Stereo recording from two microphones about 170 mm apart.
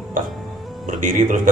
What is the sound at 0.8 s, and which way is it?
Speech, 50° right (ahead or behind).